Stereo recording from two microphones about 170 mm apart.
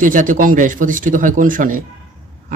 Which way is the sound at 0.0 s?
50° right (ahead or behind).